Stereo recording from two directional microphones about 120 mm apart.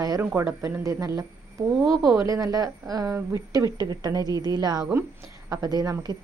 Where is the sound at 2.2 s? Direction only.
30° right (ahead or behind).